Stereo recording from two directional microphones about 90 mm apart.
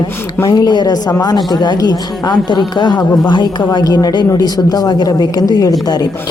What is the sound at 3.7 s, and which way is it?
A woman's voice, 45° left (ahead or behind).